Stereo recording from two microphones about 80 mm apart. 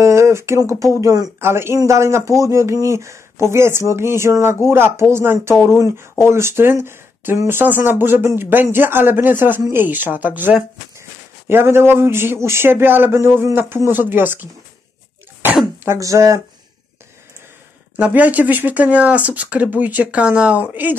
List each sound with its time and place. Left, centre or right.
0.0 s speech: right
1.4 s speech: right
11.0 s a man's voice: right
16.0 s speech: right
17.9 s speech: centre